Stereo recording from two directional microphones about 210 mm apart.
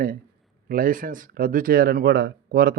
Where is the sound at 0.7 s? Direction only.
40° right (ahead or behind).